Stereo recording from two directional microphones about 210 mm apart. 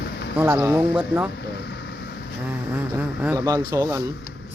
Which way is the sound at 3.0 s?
10° right (ahead or behind).